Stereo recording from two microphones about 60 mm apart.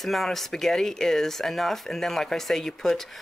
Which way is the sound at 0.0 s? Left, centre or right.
Centre.